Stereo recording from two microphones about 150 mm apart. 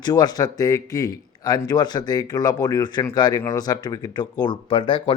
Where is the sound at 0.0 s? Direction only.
25° left (ahead or behind).